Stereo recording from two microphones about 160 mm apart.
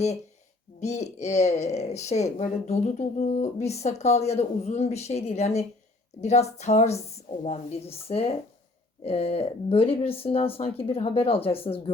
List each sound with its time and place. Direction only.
0.8 s speech: 45° left (ahead or behind)